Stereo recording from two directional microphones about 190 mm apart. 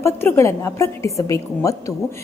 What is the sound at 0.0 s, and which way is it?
A woman's voice, 15° left (ahead or behind).